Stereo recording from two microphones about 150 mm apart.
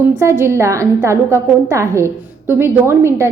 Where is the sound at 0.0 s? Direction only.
20° right (ahead or behind).